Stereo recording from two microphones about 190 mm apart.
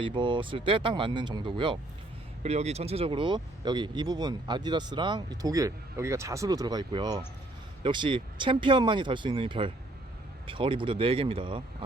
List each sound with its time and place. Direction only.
0.0 s speech: 25° right (ahead or behind)